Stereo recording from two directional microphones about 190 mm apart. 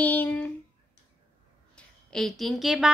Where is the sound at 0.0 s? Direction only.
10° left (ahead or behind).